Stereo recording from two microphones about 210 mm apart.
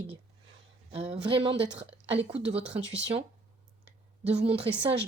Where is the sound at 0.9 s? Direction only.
30° right (ahead or behind).